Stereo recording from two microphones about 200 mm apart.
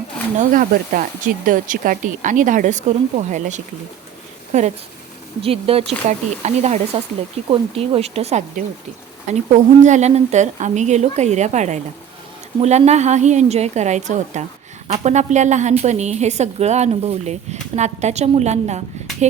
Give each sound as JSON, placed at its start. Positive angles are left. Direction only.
{"t": 0.3, "sound": "a woman's voice", "side_deg": -45}